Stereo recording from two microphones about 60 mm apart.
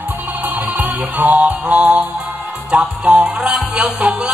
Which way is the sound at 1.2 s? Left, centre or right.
Right.